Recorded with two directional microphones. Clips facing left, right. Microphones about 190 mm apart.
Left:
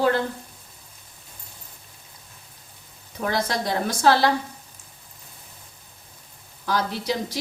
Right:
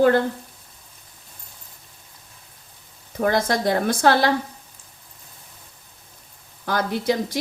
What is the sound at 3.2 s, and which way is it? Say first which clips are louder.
A woman's voice: right 5 dB; 50° right (ahead or behind).